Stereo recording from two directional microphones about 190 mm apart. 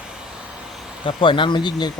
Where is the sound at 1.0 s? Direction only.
25° left (ahead or behind).